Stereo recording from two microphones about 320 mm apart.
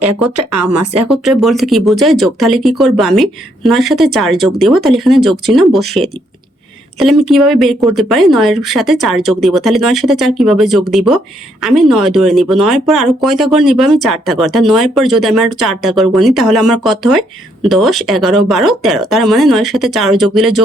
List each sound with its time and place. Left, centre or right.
0.0 s speech: right
1.0 s speech: centre
7.3 s speech: centre